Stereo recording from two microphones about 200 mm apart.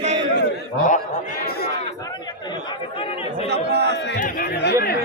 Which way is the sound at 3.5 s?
55° right (ahead or behind).